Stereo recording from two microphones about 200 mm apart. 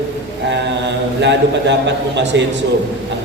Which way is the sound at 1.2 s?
60° right (ahead or behind).